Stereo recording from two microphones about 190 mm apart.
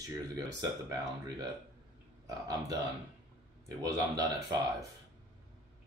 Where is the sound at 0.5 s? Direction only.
20° right (ahead or behind).